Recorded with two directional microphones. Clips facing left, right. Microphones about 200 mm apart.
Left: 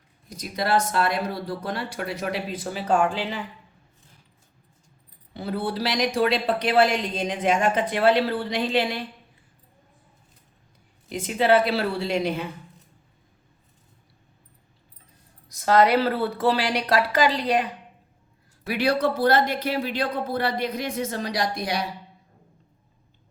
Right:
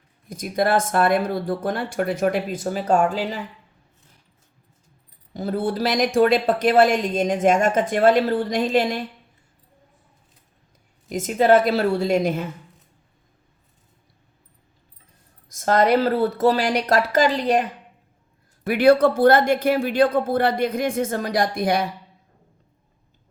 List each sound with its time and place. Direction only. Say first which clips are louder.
0.3 s speech: right 4 dB; 50° right (ahead or behind)
5.3 s speech: right 4 dB; 45° right (ahead or behind)
11.1 s speech: right 4 dB; 45° right (ahead or behind)
15.4 s speech: right 1 dB; 45° right (ahead or behind)